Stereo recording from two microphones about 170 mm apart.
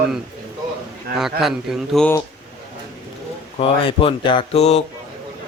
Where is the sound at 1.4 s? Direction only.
Centre (ahead or behind).